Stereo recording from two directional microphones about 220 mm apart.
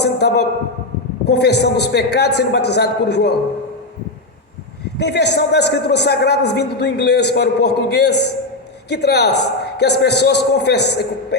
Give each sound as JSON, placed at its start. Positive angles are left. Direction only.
{"t": 0.0, "sound": "a sound", "side_deg": 50}
{"t": 1.3, "sound": "a man's voice", "side_deg": 50}
{"t": 4.9, "sound": "a man's voice", "side_deg": 50}